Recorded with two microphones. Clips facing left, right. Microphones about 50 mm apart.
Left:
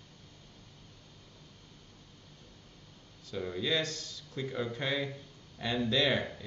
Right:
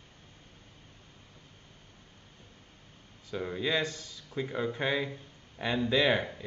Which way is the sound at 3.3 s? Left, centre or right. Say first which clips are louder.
Right 2 dB; right.